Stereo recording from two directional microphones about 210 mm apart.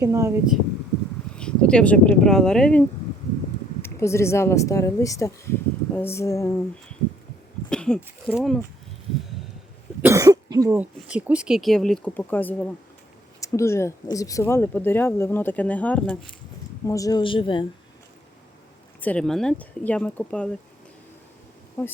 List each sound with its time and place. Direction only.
0.0 s speech: 15° right (ahead or behind)
1.4 s speech: 5° left (ahead or behind)
7.7 s speech: 5° left (ahead or behind)
10.0 s a woman's voice: 15° right (ahead or behind); by 17.7 s 25° left (ahead or behind)
18.9 s speech: 5° left (ahead or behind)
21.8 s speech: 10° left (ahead or behind)